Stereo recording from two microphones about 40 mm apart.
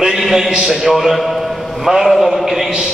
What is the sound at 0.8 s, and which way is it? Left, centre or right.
A man's voice, centre.